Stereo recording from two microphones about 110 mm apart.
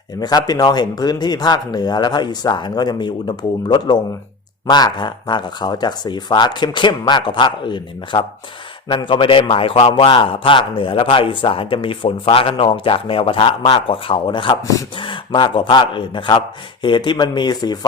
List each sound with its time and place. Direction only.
0.2 s speech: 35° left (ahead or behind)
14.6 s speech: 30° left (ahead or behind)
14.9 s speech: 50° left (ahead or behind)